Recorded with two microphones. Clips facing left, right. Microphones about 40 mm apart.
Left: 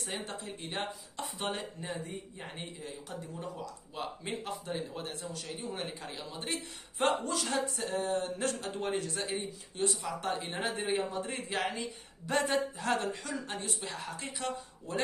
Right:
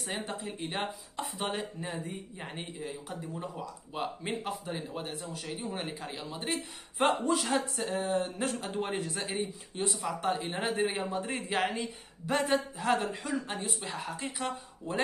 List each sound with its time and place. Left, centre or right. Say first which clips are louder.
0.0 s speech: right 3 dB; centre
3.9 s speech: right 4 dB; centre
7.2 s speech: right 4 dB; centre
11.8 s speech: right 2 dB; centre
14.9 s speech: right 3 dB; right